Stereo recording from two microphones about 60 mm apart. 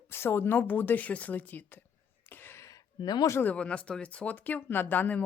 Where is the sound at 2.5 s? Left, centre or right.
Left.